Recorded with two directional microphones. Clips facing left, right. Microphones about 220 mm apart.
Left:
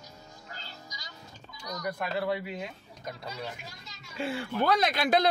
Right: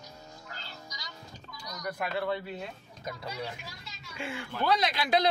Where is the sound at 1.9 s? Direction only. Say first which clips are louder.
Right 1 dB; centre (ahead or behind).